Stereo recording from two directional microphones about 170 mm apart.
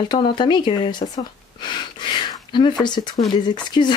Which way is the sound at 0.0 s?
25° left (ahead or behind).